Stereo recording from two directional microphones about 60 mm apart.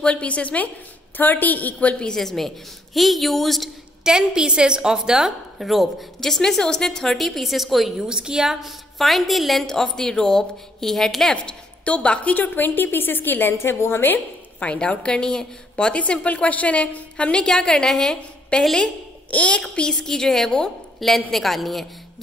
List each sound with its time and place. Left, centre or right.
0.0 s a woman's voice: left; by 3.7 s centre
4.0 s a woman's voice: centre
8.1 s a woman's voice: centre
11.8 s a woman's voice: left
14.6 s a woman's voice: centre
19.3 s a woman's voice: left; by 21.8 s centre